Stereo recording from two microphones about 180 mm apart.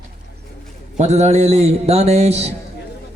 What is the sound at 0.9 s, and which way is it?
Speech, 40° right (ahead or behind).